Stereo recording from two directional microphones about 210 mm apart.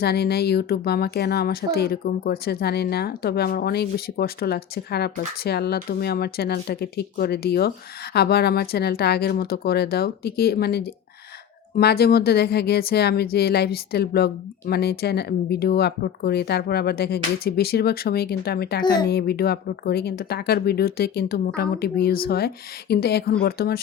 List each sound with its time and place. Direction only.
0.0 s speech: 50° left (ahead or behind)
18.8 s speech: 20° left (ahead or behind)
19.0 s speech: 50° left (ahead or behind)